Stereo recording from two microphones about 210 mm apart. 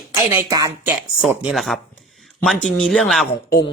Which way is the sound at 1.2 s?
Centre (ahead or behind).